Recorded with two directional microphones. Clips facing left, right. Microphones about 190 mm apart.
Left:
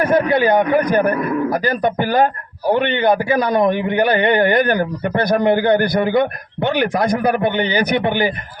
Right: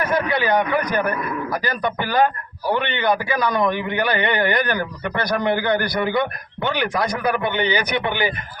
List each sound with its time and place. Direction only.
0.0 s speech: 50° left (ahead or behind)